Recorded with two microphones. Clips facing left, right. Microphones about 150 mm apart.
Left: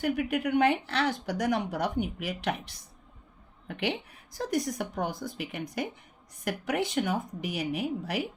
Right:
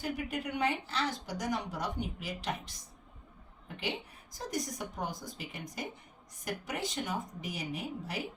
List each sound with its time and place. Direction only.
0.0 s a woman's voice: 65° left (ahead or behind)